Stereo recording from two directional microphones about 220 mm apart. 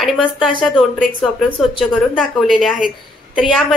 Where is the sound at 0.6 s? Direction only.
Centre (ahead or behind).